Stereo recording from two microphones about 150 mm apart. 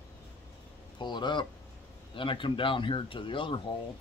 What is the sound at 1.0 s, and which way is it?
Speech, 30° left (ahead or behind).